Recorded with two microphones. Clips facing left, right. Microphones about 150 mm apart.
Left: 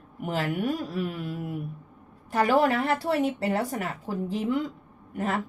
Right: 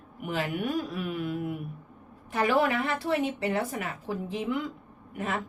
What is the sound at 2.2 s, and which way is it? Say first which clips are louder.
Speech: left 3 dB; 40° left (ahead or behind).